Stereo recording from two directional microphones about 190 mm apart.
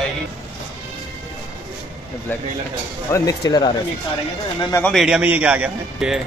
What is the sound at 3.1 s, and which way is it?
Speech, 20° left (ahead or behind).